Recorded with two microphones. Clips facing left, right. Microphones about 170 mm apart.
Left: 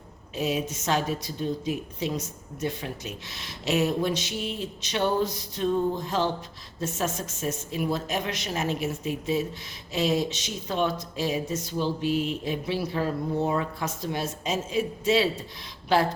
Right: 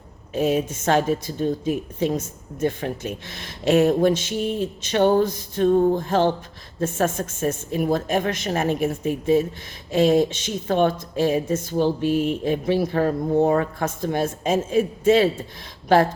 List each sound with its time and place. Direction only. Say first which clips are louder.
0.3 s a woman's voice: right 7 dB; 50° right (ahead or behind)